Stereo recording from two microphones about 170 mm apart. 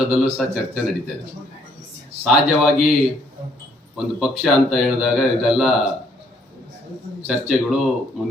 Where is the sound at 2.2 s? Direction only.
5° right (ahead or behind).